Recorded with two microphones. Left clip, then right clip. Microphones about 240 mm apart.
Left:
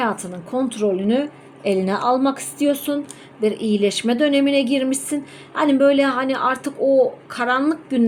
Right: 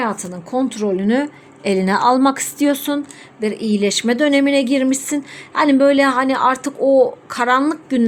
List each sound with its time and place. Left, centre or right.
0.0 s speech: centre